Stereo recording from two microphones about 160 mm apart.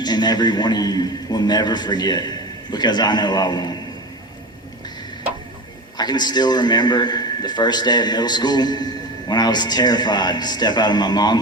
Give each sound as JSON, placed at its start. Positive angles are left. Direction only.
{"t": 0.0, "sound": "a man's voice", "side_deg": 25}
{"t": 6.0, "sound": "a man's voice", "side_deg": 25}